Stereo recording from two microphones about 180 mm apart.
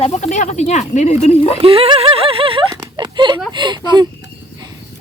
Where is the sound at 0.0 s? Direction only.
35° left (ahead or behind).